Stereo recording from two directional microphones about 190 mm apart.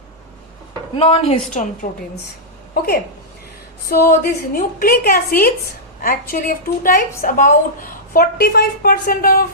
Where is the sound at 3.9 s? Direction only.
50° left (ahead or behind).